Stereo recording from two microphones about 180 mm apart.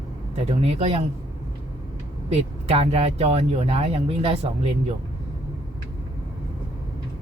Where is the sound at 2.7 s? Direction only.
35° right (ahead or behind).